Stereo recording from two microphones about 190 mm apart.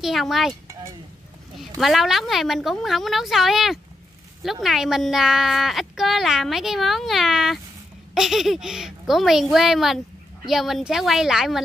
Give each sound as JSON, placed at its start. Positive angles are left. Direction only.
{"t": 0.0, "sound": "a woman's voice", "side_deg": 0}
{"t": 1.6, "sound": "a woman's voice", "side_deg": 0}